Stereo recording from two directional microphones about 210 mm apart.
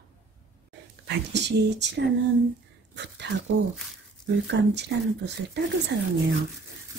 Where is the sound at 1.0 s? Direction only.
55° right (ahead or behind).